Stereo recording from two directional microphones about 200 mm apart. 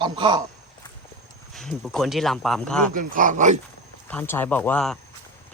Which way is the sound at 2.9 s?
45° right (ahead or behind).